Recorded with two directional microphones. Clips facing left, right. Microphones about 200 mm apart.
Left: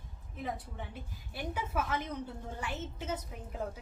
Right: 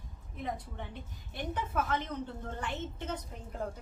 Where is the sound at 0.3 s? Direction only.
Centre (ahead or behind).